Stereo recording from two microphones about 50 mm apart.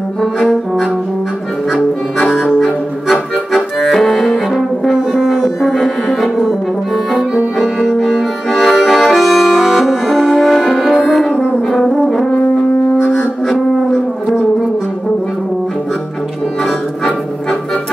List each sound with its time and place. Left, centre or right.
0.2 s brass instrument: centre
2.1 s music: centre
2.6 s accordion: centre
4.6 s brass instrument: centre
8.0 s music: centre
9.1 s music: centre
11.3 s brass instrument: left
11.7 s brass instrument: centre
13.5 s a sound: centre